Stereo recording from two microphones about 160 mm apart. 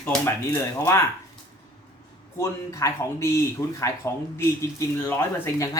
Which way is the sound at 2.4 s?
20° left (ahead or behind).